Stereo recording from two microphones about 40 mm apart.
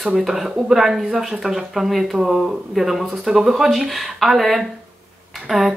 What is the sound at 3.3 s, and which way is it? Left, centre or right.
Speech, centre.